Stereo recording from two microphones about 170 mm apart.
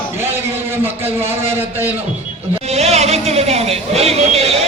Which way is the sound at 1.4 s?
15° right (ahead or behind).